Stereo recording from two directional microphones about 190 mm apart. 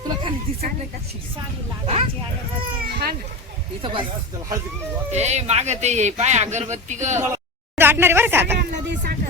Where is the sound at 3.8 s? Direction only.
25° right (ahead or behind).